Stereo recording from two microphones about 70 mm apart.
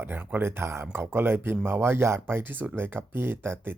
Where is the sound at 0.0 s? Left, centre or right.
Right.